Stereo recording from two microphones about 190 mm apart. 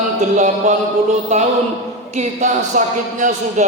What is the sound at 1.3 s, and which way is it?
A man's voice, 35° right (ahead or behind).